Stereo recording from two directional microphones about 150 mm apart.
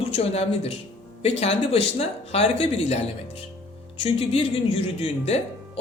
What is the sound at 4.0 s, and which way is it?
A man's voice, 40° left (ahead or behind).